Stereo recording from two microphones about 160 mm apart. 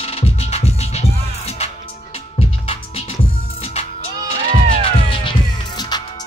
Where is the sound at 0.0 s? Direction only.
40° left (ahead or behind).